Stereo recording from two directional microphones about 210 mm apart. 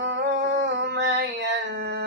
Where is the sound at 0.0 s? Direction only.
60° right (ahead or behind).